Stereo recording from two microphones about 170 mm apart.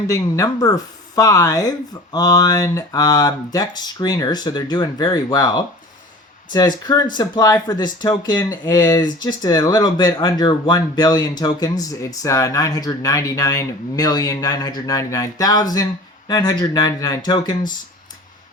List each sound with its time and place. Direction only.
0.1 s speech: 20° left (ahead or behind)